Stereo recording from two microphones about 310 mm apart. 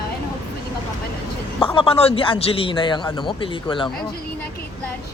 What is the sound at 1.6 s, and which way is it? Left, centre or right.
A man's voice, centre.